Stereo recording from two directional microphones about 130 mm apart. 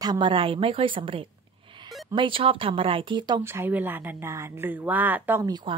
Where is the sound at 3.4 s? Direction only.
15° right (ahead or behind).